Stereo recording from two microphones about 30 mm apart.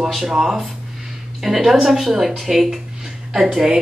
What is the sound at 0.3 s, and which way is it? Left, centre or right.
Speech, centre.